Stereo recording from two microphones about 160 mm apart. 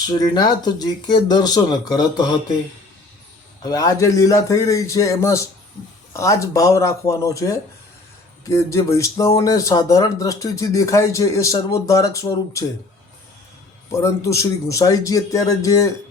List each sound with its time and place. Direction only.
0.1 s speech: 25° left (ahead or behind)
3.6 s speech: 25° left (ahead or behind)
13.9 s speech: 20° left (ahead or behind)